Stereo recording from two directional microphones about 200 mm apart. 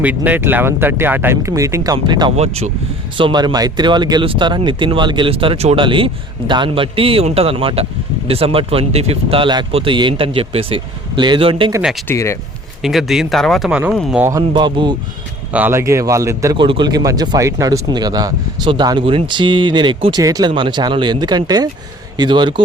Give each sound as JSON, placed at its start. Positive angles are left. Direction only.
{"t": 0.0, "sound": "a man's voice", "side_deg": -10}
{"t": 11.8, "sound": "speech", "side_deg": 0}
{"t": 12.0, "sound": "speech", "side_deg": 15}
{"t": 12.8, "sound": "speech", "side_deg": 0}
{"t": 14.3, "sound": "a man's voice", "side_deg": -20}
{"t": 15.5, "sound": "a man's voice", "side_deg": -10}